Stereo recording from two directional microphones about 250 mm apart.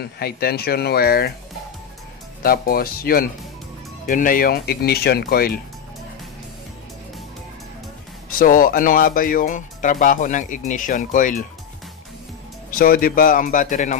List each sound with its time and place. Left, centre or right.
0.2 s speech: left
2.4 s speech: left
8.4 s speech: left
12.7 s speech: left